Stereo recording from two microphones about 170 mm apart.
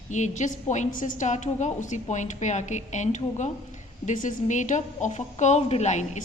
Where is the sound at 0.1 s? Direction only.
45° left (ahead or behind).